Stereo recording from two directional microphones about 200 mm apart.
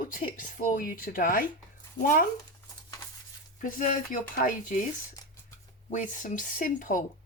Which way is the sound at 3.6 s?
40° left (ahead or behind).